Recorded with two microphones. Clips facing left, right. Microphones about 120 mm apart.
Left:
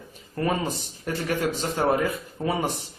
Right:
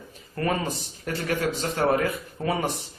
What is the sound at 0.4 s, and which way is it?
Speech, 15° left (ahead or behind).